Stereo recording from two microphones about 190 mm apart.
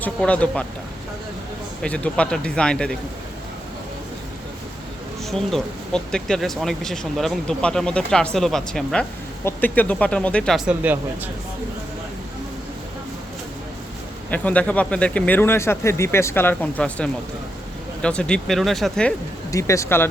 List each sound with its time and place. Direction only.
0.0 s speech: 5° left (ahead or behind)
1.8 s speech: 5° left (ahead or behind)
5.3 s speech: centre (ahead or behind)
14.3 s speech: 5° left (ahead or behind)
19.5 s speech: 15° left (ahead or behind)